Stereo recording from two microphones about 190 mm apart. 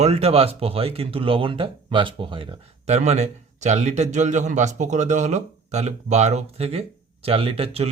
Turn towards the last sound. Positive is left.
turn(degrees=-30)  # may be behind; listen again after turning